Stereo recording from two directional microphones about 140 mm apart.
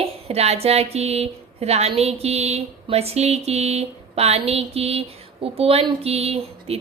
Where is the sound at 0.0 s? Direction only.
50° right (ahead or behind).